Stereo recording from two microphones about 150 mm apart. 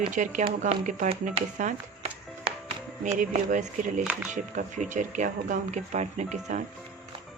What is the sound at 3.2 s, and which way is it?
Speech, 60° right (ahead or behind).